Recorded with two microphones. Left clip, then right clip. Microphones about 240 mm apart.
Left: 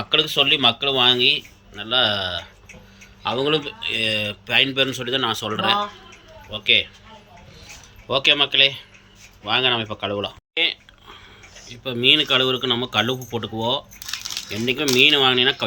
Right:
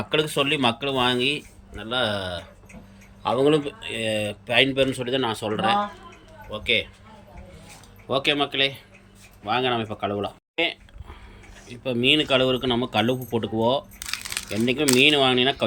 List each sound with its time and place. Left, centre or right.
0.0 s speech: centre
8.0 s speech: centre